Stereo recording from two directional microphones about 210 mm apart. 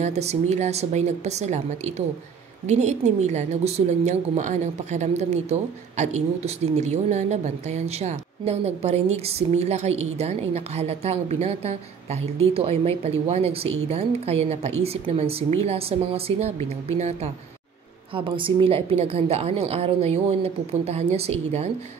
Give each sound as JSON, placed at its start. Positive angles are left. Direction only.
{"t": 0.0, "sound": "speech", "side_deg": -30}
{"t": 18.1, "sound": "speech", "side_deg": -25}